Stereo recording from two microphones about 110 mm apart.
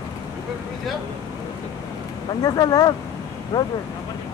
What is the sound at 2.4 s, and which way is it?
Speech, 35° left (ahead or behind).